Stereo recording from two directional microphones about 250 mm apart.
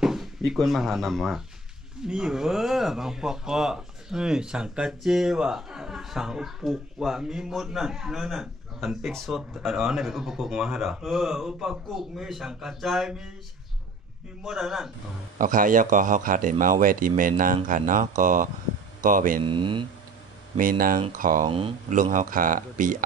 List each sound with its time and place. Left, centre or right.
0.0 s speech: centre
14.4 s speech: centre
15.3 s speech: right
19.4 s speech: centre
20.5 s speech: right
21.5 s speech: right